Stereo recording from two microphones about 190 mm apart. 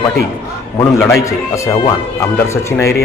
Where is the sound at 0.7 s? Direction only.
15° left (ahead or behind).